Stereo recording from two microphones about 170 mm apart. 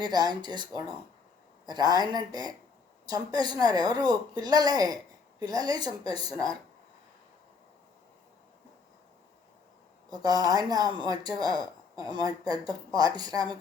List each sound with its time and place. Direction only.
0.0 s speech: 25° right (ahead or behind)
10.1 s speech: 20° right (ahead or behind)